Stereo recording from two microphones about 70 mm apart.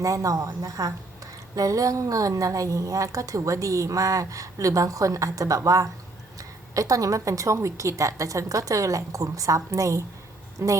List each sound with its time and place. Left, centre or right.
0.0 s a woman's voice: right